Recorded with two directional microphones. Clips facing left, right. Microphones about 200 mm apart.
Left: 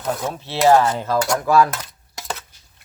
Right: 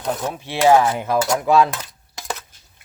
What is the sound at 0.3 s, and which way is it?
Cutlery, 15° right (ahead or behind).